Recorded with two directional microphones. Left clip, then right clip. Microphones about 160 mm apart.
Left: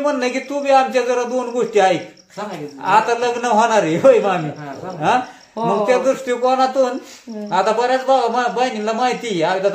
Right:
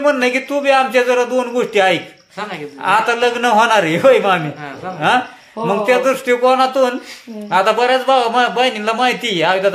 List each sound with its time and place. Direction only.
0.0 s a man's voice: 25° right (ahead or behind)
5.7 s a man's voice: 25° right (ahead or behind)